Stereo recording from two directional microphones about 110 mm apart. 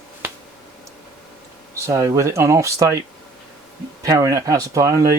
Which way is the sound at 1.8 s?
30° right (ahead or behind).